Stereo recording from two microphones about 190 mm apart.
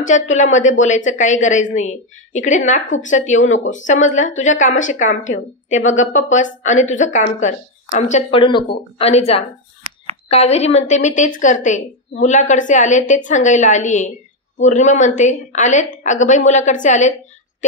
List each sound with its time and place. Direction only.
0.0 s a woman's voice: 40° left (ahead or behind)
8.4 s a woman's voice: 25° left (ahead or behind); by 17.1 s 40° left (ahead or behind)